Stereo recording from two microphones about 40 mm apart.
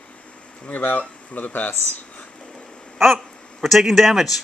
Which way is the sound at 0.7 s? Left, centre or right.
Left.